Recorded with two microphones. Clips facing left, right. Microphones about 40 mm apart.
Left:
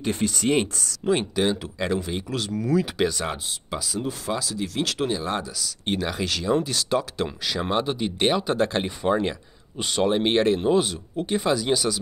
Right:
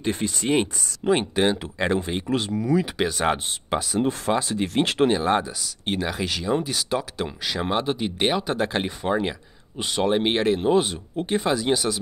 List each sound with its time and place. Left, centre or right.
0.0 s speech: centre
1.0 s speech: right
2.8 s speech: centre
3.3 s speech: right
5.9 s speech: centre